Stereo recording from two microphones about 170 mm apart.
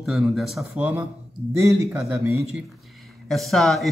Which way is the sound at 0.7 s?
15° right (ahead or behind).